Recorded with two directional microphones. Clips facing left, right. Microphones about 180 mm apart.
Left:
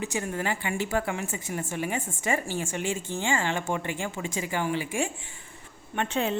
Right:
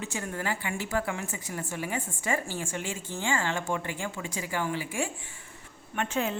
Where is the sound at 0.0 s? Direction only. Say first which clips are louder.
Left 4 dB; 15° left (ahead or behind).